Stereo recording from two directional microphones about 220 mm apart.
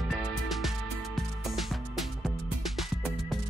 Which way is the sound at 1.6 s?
Centre (ahead or behind).